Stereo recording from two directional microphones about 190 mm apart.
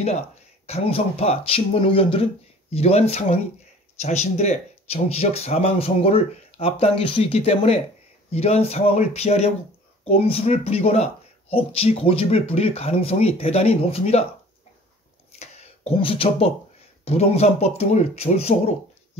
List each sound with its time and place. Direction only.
0.7 s speech: 30° left (ahead or behind)
15.3 s a sound: 35° left (ahead or behind)
17.0 s speech: 35° left (ahead or behind)